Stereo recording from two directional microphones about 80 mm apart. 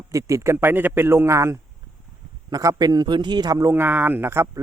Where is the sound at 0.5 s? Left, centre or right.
Right.